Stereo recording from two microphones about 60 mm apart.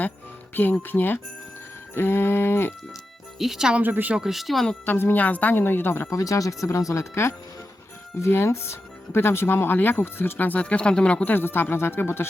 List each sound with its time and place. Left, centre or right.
0.5 s speech: left
3.3 s speech: centre
3.8 s a woman's voice: right
4.1 s speech: centre
4.9 s speech: left
6.1 s speech: left
10.3 s speech: left
11.3 s speech: left